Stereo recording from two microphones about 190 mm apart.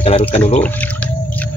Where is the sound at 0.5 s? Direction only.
10° left (ahead or behind).